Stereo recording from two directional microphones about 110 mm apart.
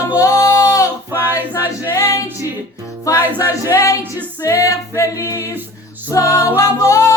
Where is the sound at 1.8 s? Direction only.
30° left (ahead or behind).